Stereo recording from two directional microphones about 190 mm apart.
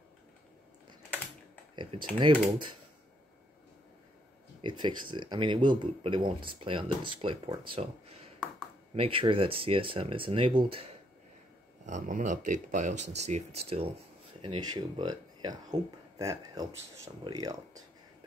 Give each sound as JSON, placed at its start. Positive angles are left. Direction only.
{"t": 2.1, "sound": "speech", "side_deg": -25}
{"t": 4.6, "sound": "speech", "side_deg": -25}
{"t": 8.9, "sound": "speech", "side_deg": -30}
{"t": 11.8, "sound": "speech", "side_deg": -40}
{"t": 14.4, "sound": "speech", "side_deg": -25}